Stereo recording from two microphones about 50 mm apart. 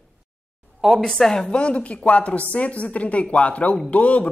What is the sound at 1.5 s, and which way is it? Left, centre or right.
Speech, left.